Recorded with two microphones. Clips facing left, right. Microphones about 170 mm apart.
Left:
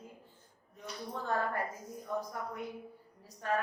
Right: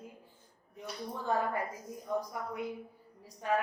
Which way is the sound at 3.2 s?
15° right (ahead or behind).